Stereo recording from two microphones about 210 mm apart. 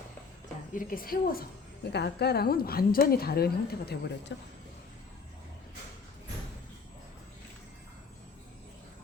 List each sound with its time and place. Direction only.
0.7 s a woman's voice: 40° left (ahead or behind)